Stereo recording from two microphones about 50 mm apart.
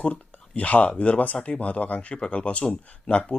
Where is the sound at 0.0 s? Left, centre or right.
Left.